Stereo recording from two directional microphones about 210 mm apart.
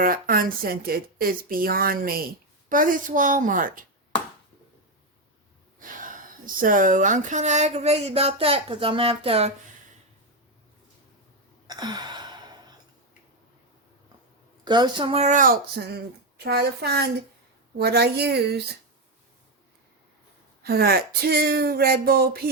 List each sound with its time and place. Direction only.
0.0 s speech: 45° right (ahead or behind)
5.8 s speech: 40° right (ahead or behind)
11.7 s sigh: 20° right (ahead or behind)
14.6 s speech: 20° right (ahead or behind); by 18.6 s 50° right (ahead or behind)
20.7 s speech: 45° right (ahead or behind)